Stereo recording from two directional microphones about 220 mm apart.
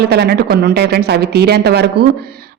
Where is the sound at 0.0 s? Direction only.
45° right (ahead or behind).